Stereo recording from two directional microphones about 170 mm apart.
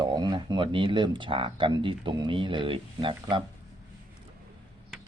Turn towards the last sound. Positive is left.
turn(degrees=-30)  # may be behind; listen again after turning